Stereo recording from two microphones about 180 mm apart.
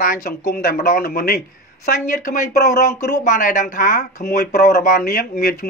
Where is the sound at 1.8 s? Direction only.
45° left (ahead or behind).